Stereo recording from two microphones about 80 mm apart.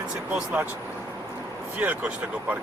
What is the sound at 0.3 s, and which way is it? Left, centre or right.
Speech, right.